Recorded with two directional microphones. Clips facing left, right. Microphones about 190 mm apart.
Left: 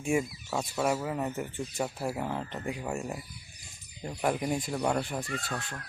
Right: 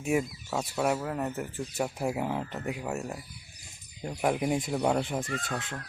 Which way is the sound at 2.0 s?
15° right (ahead or behind).